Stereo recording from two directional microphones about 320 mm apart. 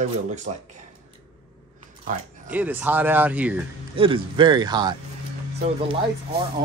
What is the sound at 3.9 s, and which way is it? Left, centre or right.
Speech, centre.